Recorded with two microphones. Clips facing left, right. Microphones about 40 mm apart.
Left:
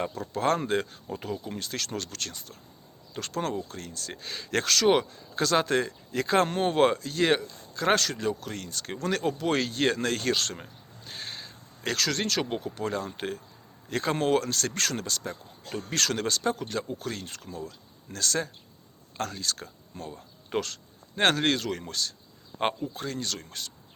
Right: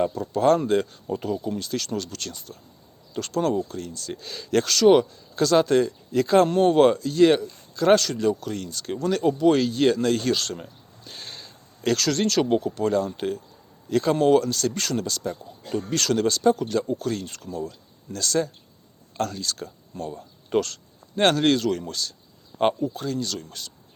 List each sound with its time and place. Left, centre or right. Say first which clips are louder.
0.1 s speech: right 7 dB; left
3.7 s speech: right 6 dB; left
4.1 s speech: right 6 dB; left
11.1 s a sound: left 1 dB; centre
12.4 s speech: right 9 dB; centre
12.6 s speech: right 8 dB; centre
14.2 s speech: right 6 dB; left
17.5 s speech: right 7 dB; right
18.2 s speech: right 5 dB; left